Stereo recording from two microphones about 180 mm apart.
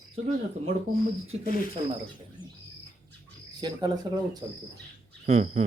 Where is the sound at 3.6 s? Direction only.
25° right (ahead or behind).